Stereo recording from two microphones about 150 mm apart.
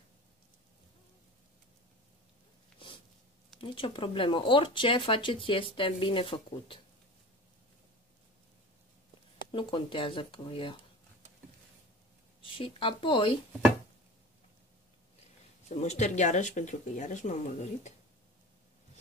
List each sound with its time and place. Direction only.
3.5 s speech: 35° left (ahead or behind)
9.5 s speech: 35° left (ahead or behind)
12.4 s speech: 35° left (ahead or behind)
15.7 s speech: 50° left (ahead or behind)